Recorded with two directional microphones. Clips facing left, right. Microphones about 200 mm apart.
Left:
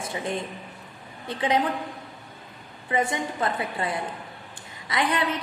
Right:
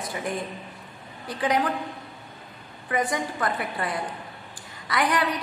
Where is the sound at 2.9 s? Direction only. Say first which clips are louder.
Even; 25° left (ahead or behind).